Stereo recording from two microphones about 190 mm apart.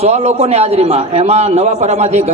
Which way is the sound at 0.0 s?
35° right (ahead or behind).